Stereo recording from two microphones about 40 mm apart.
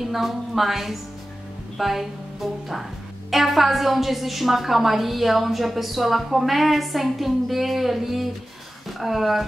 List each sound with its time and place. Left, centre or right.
0.0 s a woman's voice: centre